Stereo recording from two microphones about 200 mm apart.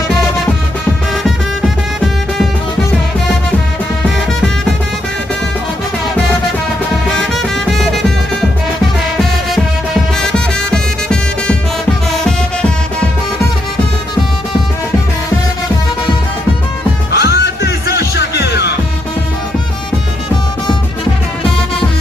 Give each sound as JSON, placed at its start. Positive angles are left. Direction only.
{"t": 1.2, "sound": "music", "side_deg": 0}
{"t": 7.2, "sound": "music", "side_deg": 0}
{"t": 10.2, "sound": "music", "side_deg": 5}
{"t": 17.1, "sound": "music", "side_deg": 55}